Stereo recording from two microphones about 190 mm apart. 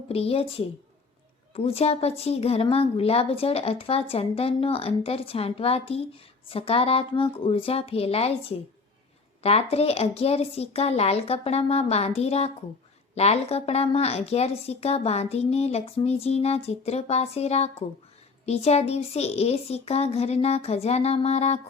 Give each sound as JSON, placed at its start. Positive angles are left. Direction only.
{"t": 0.1, "sound": "a woman's voice", "side_deg": 30}